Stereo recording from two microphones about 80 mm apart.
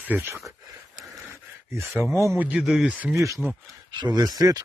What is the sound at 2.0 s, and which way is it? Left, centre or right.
Speech, left.